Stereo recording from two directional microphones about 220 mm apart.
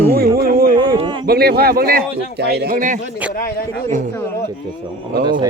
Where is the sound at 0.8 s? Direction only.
20° right (ahead or behind).